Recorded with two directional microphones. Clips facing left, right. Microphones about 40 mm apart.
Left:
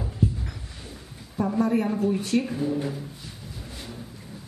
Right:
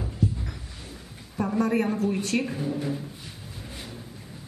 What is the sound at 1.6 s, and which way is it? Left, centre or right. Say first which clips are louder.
Speech: left 1 dB; right.